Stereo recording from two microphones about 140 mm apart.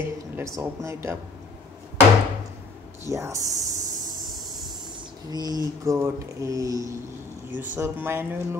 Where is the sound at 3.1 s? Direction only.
20° right (ahead or behind).